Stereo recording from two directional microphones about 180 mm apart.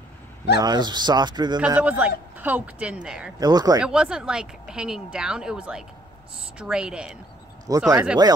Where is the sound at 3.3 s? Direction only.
20° right (ahead or behind).